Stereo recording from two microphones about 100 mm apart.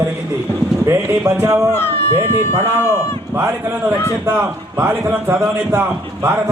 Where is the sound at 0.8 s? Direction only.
35° right (ahead or behind).